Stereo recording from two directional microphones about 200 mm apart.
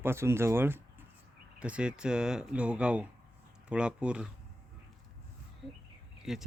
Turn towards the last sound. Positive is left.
turn(degrees=0)  # may be behind; listen again after turning